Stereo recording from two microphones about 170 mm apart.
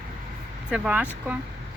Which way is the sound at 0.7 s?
5° right (ahead or behind).